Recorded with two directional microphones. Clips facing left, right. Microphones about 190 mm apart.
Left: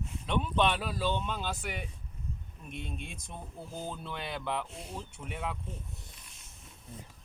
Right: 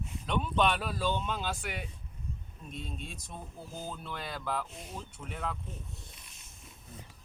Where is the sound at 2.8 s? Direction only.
60° left (ahead or behind).